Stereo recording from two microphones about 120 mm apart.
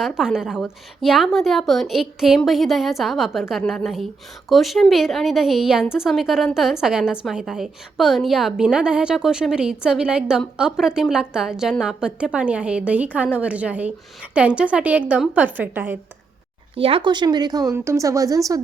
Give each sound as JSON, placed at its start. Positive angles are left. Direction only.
{"t": 0.0, "sound": "a woman's voice", "side_deg": -5}
{"t": 16.7, "sound": "a woman's voice", "side_deg": -50}